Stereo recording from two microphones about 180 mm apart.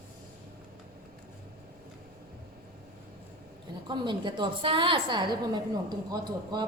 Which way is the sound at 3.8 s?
25° right (ahead or behind).